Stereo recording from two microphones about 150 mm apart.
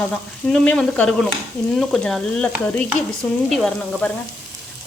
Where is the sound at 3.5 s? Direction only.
5° left (ahead or behind).